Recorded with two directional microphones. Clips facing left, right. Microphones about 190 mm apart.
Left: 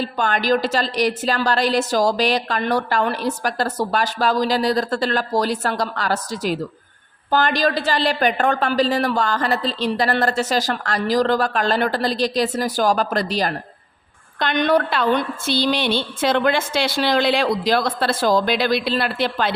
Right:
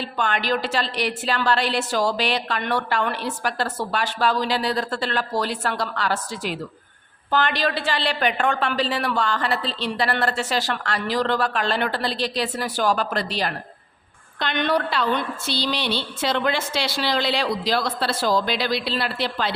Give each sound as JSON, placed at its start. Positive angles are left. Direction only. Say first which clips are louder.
{"t": 0.0, "sound": "a woman's voice", "louder": "left 4 dB", "side_deg": 40}